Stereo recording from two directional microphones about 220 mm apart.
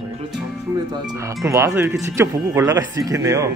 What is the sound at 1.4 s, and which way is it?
Speech, 15° right (ahead or behind).